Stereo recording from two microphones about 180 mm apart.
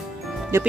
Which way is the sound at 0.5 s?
15° right (ahead or behind).